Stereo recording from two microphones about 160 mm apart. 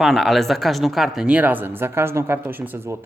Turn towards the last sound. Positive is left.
turn(degrees=-15)  # may be behind; listen again after turning